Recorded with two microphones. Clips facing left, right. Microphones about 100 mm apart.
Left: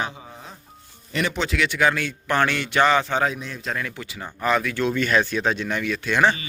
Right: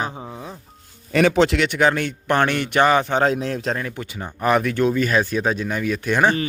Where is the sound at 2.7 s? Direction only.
20° right (ahead or behind).